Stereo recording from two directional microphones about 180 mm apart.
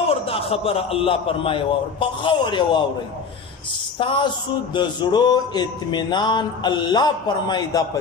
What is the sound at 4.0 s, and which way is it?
A man's voice, 25° left (ahead or behind).